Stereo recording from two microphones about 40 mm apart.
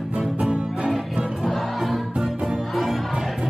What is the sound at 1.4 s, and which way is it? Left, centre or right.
Music, centre.